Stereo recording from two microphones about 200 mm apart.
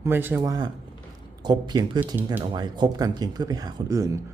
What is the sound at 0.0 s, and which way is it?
Speech, 10° right (ahead or behind).